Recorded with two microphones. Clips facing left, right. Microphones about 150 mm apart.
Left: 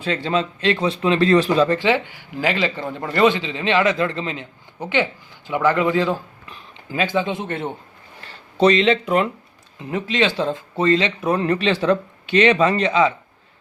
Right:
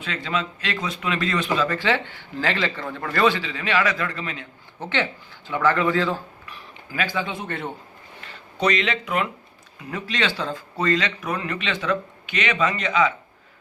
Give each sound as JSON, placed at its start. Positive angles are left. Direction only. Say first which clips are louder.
{"t": 0.0, "sound": "speech", "louder": "left 6 dB", "side_deg": 35}
{"t": 1.8, "sound": "a man's voice", "louder": "left 4 dB", "side_deg": 15}
{"t": 4.8, "sound": "speech", "louder": "left 4 dB", "side_deg": 15}